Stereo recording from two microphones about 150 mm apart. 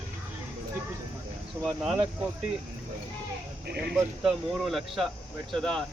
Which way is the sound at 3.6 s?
90° right.